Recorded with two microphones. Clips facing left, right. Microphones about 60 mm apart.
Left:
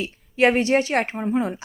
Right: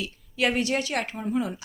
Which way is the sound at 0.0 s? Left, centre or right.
Left.